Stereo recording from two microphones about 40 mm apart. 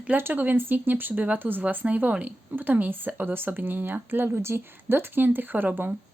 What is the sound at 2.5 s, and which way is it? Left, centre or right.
Speech, right.